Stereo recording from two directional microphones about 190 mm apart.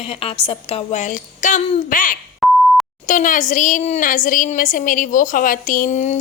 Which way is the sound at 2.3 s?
Centre (ahead or behind).